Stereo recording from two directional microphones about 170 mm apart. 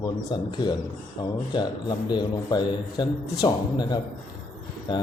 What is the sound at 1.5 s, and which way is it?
Speech, 25° left (ahead or behind).